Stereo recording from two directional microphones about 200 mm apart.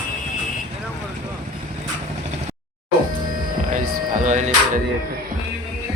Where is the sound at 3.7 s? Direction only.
40° right (ahead or behind).